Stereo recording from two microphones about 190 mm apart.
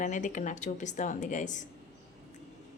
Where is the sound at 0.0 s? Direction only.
40° left (ahead or behind).